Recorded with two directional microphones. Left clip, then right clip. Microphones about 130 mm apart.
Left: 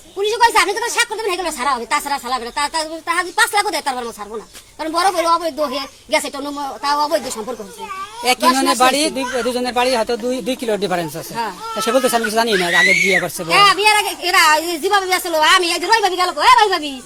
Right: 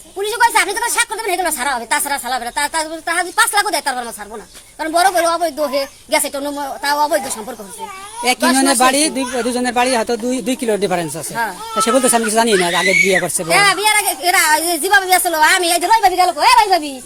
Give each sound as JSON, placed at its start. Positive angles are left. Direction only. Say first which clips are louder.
{"t": 0.2, "sound": "a woman's voice", "louder": "even", "side_deg": -20}
{"t": 8.2, "sound": "speech", "louder": "even", "side_deg": -55}
{"t": 13.5, "sound": "a woman's voice", "louder": "left 1 dB", "side_deg": -20}